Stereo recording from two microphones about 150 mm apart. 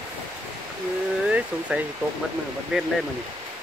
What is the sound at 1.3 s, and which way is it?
Speech, 10° right (ahead or behind).